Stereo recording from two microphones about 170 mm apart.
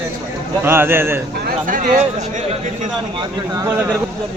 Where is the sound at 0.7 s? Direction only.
15° right (ahead or behind).